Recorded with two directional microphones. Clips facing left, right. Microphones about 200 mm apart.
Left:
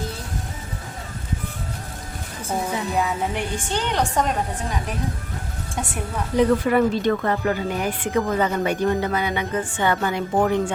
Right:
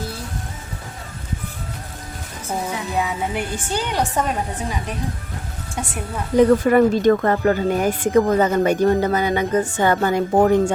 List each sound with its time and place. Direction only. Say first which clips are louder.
2.9 s a woman's voice: right 2 dB; centre (ahead or behind)
6.3 s speech: right 4 dB; 45° right (ahead or behind)